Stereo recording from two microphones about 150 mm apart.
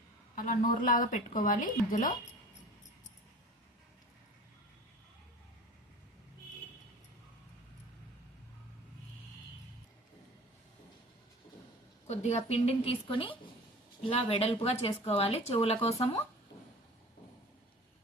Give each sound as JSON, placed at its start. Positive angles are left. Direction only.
{"t": 0.3, "sound": "a woman's voice", "side_deg": 60}
{"t": 12.0, "sound": "a woman's voice", "side_deg": 45}